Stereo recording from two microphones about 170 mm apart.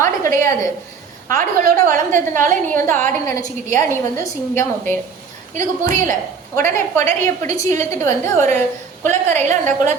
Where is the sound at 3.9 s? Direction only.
15° left (ahead or behind).